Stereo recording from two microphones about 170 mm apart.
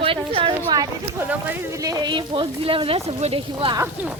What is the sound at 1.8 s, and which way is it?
A woman's voice, 20° right (ahead or behind).